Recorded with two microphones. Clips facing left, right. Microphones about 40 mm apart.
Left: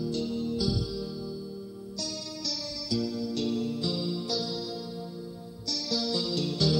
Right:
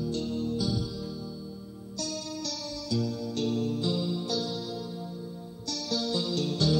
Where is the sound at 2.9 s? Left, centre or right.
Right.